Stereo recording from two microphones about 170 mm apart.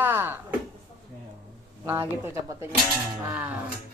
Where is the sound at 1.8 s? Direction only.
15° right (ahead or behind).